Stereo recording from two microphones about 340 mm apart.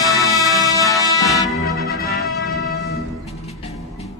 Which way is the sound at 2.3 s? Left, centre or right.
Left.